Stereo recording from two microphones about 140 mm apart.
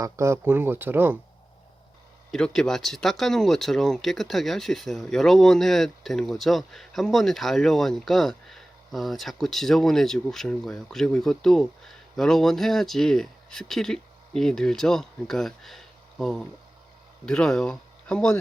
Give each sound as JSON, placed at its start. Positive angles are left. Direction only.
{"t": 0.0, "sound": "speech", "side_deg": -20}
{"t": 2.3, "sound": "speech", "side_deg": 5}